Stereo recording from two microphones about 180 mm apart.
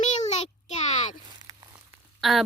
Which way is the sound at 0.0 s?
40° left (ahead or behind).